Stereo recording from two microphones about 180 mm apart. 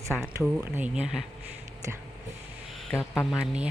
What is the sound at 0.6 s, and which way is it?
Speech, 10° right (ahead or behind).